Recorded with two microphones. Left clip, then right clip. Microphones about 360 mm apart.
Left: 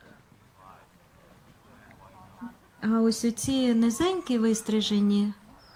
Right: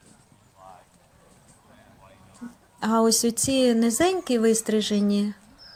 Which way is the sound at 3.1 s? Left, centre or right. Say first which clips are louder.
Right 5 dB; centre.